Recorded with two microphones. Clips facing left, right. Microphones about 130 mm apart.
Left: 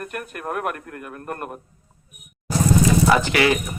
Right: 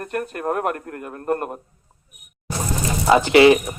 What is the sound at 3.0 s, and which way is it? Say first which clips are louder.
Speech: right 6 dB; 25° right (ahead or behind).